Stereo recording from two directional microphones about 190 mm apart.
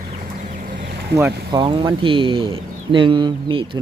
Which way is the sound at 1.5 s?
25° right (ahead or behind).